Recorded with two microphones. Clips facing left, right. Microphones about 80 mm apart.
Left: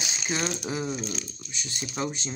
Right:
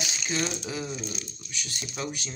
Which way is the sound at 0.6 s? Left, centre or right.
Left.